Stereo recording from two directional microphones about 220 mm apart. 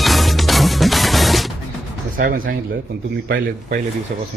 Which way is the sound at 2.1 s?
40° right (ahead or behind).